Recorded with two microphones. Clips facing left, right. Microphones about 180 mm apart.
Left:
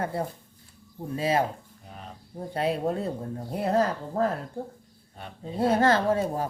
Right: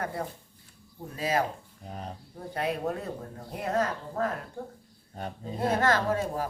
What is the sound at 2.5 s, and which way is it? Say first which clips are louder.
Speech: left 3 dB; 30° left (ahead or behind).